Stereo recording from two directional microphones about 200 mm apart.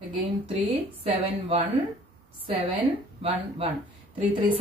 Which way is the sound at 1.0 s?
30° right (ahead or behind).